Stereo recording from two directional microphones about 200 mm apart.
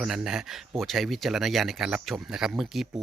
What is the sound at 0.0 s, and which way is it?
Speech, centre (ahead or behind).